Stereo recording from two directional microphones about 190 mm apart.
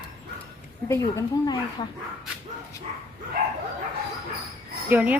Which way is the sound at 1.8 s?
20° left (ahead or behind).